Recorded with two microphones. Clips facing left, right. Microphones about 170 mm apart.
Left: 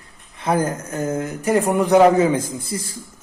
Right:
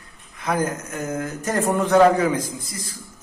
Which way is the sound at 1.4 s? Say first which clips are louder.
Left 4 dB; 10° left (ahead or behind).